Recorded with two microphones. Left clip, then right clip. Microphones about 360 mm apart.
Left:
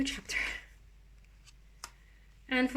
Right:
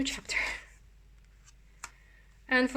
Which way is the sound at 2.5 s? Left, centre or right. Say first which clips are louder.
Right 4 dB; centre.